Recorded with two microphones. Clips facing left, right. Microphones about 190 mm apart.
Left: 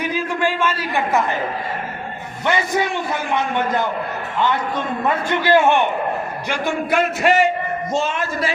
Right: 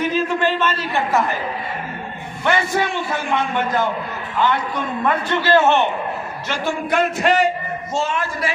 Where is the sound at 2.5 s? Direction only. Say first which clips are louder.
Even; 20° left (ahead or behind).